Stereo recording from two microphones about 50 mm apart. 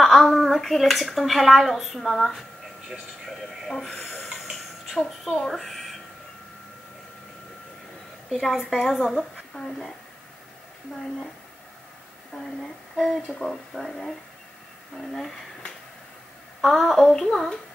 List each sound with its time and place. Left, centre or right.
0.0 s speech: centre
4.5 s a sound: centre
5.2 s speech: centre
8.3 s speech: centre
9.5 s speech: centre
12.4 s speech: centre
16.6 s speech: centre